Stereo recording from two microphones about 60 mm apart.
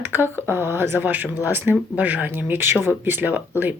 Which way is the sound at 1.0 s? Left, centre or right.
Right.